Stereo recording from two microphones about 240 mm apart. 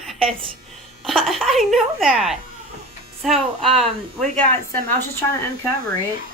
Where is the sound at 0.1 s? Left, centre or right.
Centre.